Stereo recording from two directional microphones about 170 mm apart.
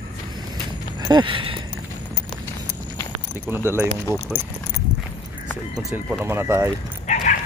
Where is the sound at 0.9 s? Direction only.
25° right (ahead or behind).